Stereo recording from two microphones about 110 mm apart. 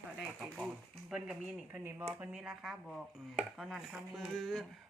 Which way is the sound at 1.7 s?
20° right (ahead or behind).